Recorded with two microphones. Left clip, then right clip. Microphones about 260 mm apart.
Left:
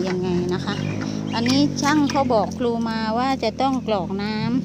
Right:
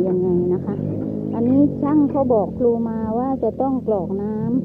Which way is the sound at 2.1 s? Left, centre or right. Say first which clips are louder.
Right 1 dB; left.